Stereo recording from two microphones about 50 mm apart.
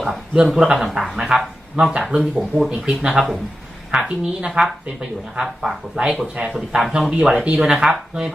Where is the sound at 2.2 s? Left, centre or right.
Centre.